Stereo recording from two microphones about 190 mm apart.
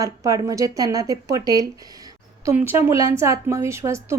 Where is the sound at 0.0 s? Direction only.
15° right (ahead or behind).